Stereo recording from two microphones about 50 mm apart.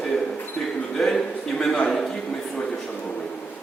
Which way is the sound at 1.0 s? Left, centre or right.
Centre.